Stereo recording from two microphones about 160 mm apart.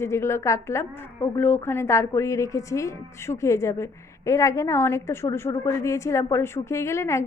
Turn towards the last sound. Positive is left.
turn(degrees=15)  # may be behind; listen again after turning